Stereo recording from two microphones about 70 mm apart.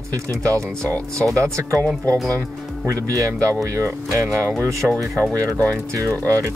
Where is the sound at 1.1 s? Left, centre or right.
Centre.